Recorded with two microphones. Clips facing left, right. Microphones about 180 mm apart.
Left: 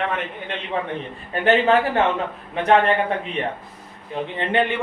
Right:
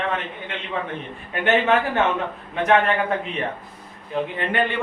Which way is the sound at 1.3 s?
35° left (ahead or behind).